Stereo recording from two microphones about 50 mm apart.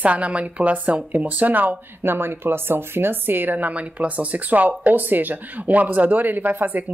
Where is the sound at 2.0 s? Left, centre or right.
Right.